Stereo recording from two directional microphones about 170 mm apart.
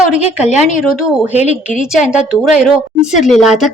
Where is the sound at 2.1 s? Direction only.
5° right (ahead or behind).